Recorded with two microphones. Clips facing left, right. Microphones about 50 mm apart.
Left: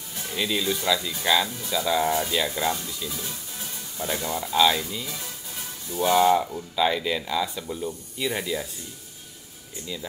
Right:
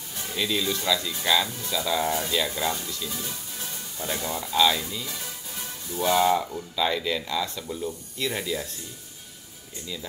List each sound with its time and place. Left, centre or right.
0.1 s music: centre
0.4 s speech: centre